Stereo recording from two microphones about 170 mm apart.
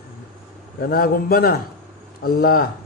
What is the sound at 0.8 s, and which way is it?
A man's voice, 60° left (ahead or behind).